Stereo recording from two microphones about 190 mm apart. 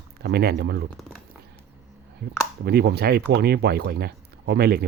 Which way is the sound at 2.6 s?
60° right (ahead or behind).